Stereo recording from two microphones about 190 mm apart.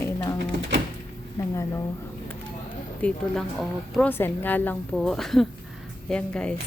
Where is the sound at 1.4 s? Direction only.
15° left (ahead or behind).